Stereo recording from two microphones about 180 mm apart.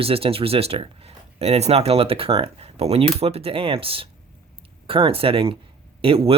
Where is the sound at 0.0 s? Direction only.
30° right (ahead or behind).